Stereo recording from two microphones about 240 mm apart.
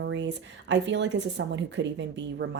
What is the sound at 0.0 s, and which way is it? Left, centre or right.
Speech, right.